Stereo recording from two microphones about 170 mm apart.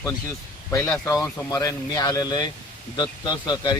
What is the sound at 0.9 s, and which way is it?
Speech, 15° left (ahead or behind).